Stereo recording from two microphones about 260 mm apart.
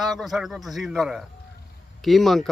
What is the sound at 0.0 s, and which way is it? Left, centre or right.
Speech, centre.